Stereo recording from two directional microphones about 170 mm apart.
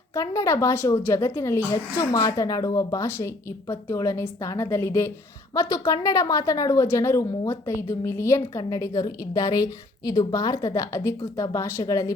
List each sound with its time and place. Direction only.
0.1 s a woman's voice: 15° left (ahead or behind)